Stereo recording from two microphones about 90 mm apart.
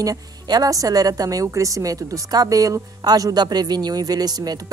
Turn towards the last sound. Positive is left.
turn(degrees=-45)  # may be behind; listen again after turning